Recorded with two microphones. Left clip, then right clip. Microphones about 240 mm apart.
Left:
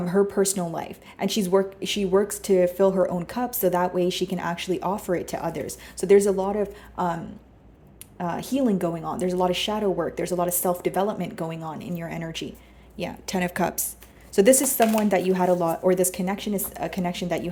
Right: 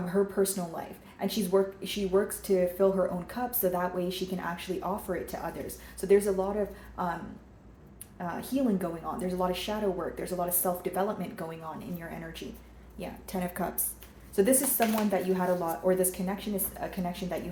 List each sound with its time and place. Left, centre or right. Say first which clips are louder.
0.1 s a woman's voice: left 6 dB; left
8.2 s a woman's voice: left 6 dB; left